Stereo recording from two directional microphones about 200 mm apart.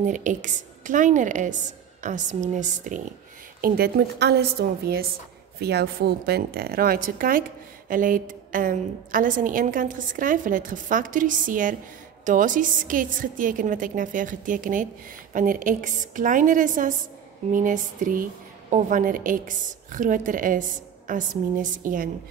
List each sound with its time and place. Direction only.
0.0 s a woman's voice: 40° right (ahead or behind)
3.6 s a woman's voice: 50° right (ahead or behind)